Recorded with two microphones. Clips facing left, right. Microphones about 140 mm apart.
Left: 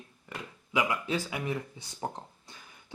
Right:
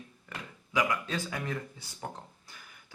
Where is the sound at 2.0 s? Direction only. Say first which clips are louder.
Left 4 dB; 25° left (ahead or behind).